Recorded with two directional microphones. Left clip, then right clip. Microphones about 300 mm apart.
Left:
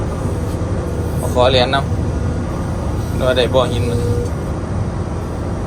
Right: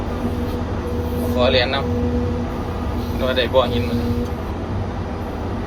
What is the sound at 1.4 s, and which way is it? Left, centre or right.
Speech, centre.